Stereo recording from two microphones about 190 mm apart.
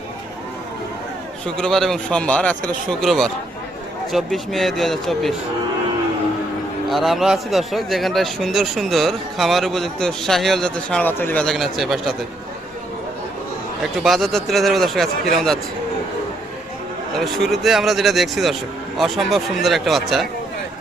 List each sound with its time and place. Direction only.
1.5 s a man's voice: 5° left (ahead or behind)
6.8 s a man's voice: centre (ahead or behind)
14.0 s a man's voice: centre (ahead or behind)
17.2 s a man's voice: centre (ahead or behind)